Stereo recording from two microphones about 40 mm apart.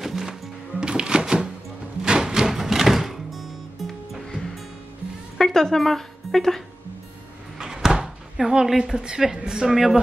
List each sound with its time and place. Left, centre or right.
0.0 s music: centre
0.7 s music: right; by 4.2 s centre
5.4 s speech: centre
7.5 s speech: centre